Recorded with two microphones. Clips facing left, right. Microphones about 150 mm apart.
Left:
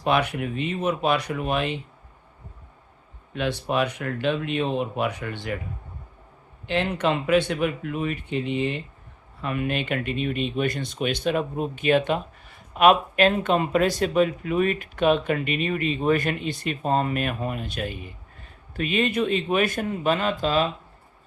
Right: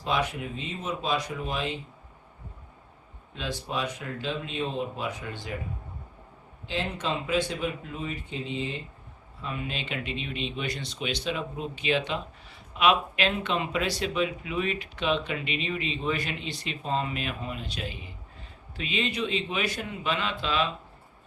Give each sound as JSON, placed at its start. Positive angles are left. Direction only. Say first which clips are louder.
{"t": 0.0, "sound": "speech", "louder": "left 6 dB", "side_deg": 65}
{"t": 3.3, "sound": "speech", "louder": "left 8 dB", "side_deg": 65}
{"t": 6.7, "sound": "speech", "louder": "left 7 dB", "side_deg": 65}